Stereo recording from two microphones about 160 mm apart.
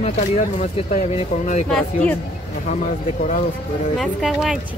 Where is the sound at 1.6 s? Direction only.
5° left (ahead or behind).